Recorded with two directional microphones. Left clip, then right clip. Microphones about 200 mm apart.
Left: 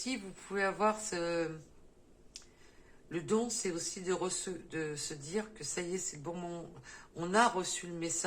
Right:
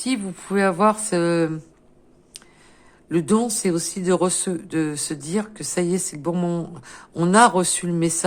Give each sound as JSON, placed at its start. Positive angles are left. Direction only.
{"t": 0.0, "sound": "a man's voice", "side_deg": -55}
{"t": 3.1, "sound": "a man's voice", "side_deg": -60}